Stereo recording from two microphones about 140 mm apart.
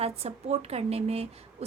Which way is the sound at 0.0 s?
50° right (ahead or behind).